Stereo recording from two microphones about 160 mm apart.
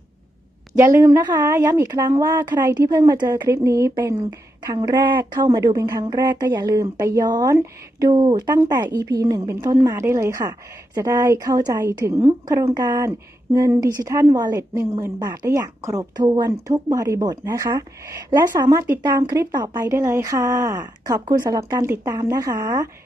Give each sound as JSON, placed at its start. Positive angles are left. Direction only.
{"t": 0.7, "sound": "a woman's voice", "side_deg": -15}